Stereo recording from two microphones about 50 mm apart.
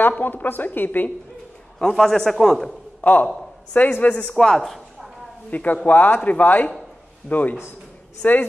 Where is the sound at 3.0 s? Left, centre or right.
Left.